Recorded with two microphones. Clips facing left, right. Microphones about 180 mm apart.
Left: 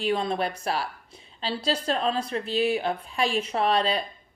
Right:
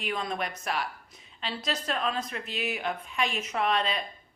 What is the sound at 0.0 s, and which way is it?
Speech, 30° left (ahead or behind).